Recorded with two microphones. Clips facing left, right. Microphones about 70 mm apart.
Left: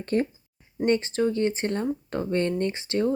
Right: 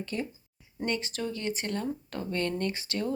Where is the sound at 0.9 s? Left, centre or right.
Left.